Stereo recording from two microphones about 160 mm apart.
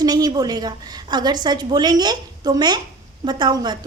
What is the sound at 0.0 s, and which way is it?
A woman's voice, 25° right (ahead or behind).